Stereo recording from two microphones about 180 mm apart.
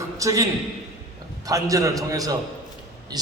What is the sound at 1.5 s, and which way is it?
Speech, 20° right (ahead or behind).